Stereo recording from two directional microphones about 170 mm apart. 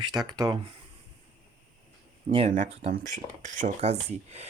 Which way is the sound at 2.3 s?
40° right (ahead or behind).